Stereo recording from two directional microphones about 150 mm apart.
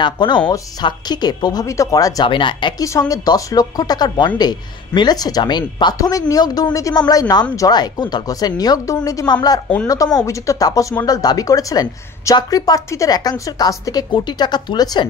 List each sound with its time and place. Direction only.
0.0 s speech: 30° left (ahead or behind)
2.8 s speech: 20° left (ahead or behind)